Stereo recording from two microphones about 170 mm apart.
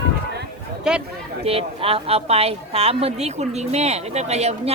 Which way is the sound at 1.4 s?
35° right (ahead or behind).